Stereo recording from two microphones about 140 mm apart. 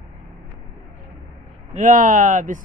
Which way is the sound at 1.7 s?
65° right (ahead or behind).